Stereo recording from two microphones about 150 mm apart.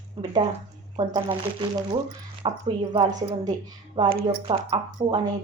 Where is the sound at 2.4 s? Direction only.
40° right (ahead or behind).